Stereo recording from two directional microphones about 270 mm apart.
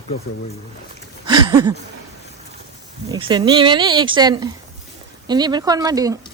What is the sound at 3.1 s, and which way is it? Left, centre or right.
Speech, centre.